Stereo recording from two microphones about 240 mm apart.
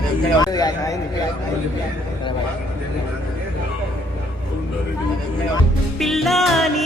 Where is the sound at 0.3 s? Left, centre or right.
Centre.